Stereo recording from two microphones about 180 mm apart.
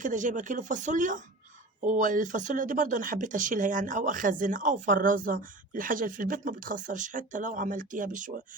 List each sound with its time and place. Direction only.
0.0 s speech: 45° right (ahead or behind)